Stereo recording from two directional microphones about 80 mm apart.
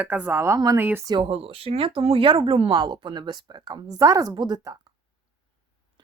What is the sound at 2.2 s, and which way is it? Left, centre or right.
A woman's voice, right.